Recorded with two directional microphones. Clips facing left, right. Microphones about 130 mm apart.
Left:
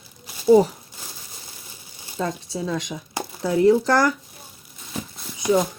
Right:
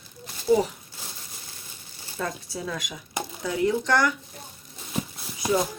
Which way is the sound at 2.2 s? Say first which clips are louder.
Left 5 dB; 25° left (ahead or behind).